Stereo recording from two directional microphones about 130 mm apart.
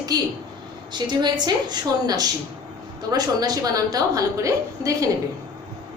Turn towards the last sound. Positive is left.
turn(degrees=-25)  # may be behind; listen again after turning